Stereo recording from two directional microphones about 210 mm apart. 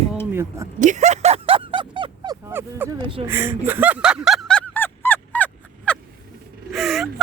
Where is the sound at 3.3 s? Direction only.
10° right (ahead or behind); by 6.0 s 5° left (ahead or behind).